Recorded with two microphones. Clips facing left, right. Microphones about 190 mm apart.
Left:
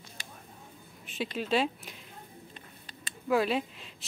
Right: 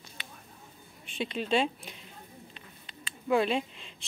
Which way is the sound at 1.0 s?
5° left (ahead or behind).